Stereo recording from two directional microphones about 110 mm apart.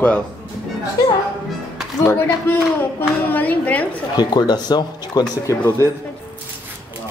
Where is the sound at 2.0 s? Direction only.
15° left (ahead or behind).